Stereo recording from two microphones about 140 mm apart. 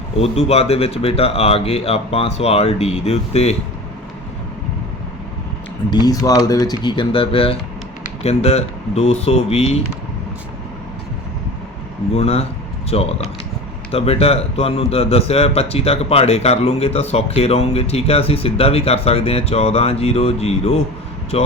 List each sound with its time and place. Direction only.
0.2 s a man's voice: 45° left (ahead or behind)
5.9 s a man's voice: 30° left (ahead or behind); by 9.7 s 45° left (ahead or behind)
12.1 s a man's voice: 45° left (ahead or behind)